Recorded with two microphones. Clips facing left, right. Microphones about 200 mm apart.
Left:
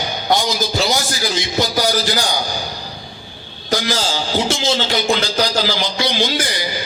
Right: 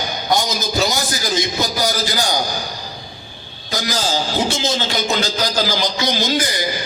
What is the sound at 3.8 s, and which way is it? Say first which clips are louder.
A man's voice: right 2 dB; 45° right (ahead or behind).